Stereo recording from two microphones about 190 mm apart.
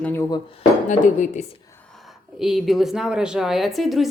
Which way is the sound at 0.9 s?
40° left (ahead or behind).